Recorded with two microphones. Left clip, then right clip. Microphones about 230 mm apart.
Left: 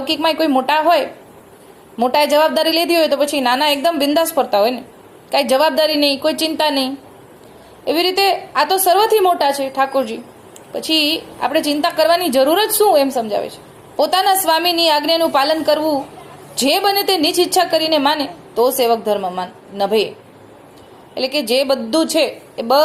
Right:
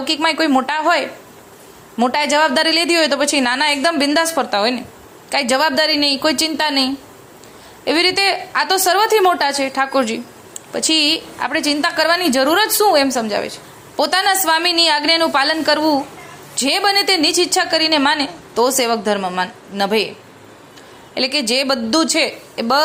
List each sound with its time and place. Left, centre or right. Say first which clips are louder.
0.0 s a woman's voice: even; right
2.1 s a woman's voice: left 2 dB; right
21.2 s a woman's voice: left 1 dB; right